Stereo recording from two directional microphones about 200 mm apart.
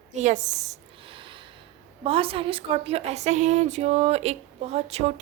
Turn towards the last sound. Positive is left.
turn(degrees=-30)  # may be behind; listen again after turning